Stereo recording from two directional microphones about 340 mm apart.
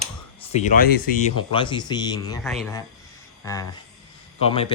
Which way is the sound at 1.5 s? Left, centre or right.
Centre.